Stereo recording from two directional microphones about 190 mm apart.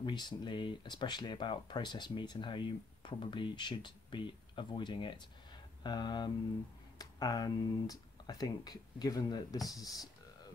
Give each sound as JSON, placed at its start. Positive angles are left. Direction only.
{"t": 0.0, "sound": "speech", "side_deg": 25}